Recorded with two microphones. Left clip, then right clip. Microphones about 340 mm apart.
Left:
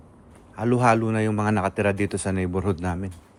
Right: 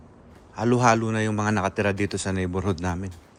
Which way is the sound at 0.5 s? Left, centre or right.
Centre.